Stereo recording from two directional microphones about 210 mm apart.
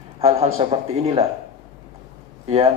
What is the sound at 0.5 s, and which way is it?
Speech, 30° right (ahead or behind).